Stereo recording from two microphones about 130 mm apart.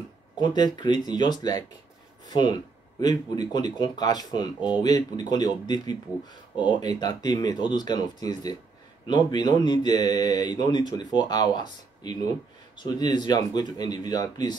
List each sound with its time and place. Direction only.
0.4 s speech: 35° left (ahead or behind)